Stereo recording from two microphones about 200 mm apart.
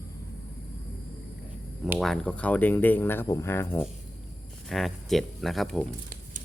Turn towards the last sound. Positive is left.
turn(degrees=0)  # may be behind; listen again after turning